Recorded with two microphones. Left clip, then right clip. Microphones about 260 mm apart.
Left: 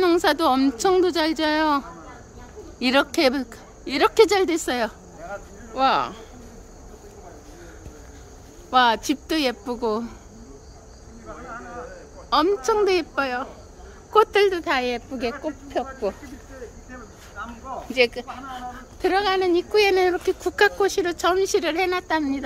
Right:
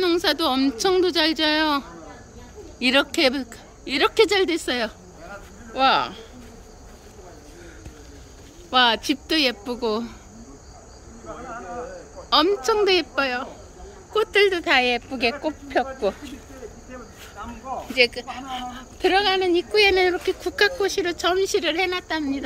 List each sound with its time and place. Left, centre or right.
0.0 s speech: centre
8.6 s speech: centre
11.2 s a sound: right
12.3 s speech: centre
17.4 s a sound: right
17.9 s speech: centre